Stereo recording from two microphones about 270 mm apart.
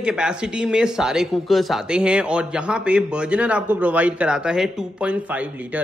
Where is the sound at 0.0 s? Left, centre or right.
Centre.